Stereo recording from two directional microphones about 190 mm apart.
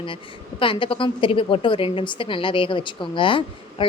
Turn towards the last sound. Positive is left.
turn(degrees=25)  # may be behind; listen again after turning